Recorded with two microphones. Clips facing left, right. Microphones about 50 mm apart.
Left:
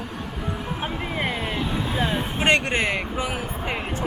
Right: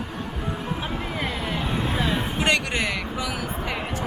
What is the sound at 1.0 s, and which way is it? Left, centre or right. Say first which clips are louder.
Speech: left 2 dB; centre.